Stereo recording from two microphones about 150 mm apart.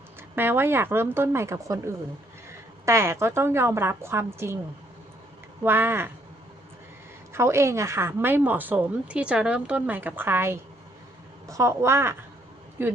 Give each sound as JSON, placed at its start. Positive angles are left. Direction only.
{"t": 0.3, "sound": "a woman's voice", "side_deg": -15}
{"t": 5.6, "sound": "a woman's voice", "side_deg": -15}
{"t": 7.3, "sound": "a woman's voice", "side_deg": -20}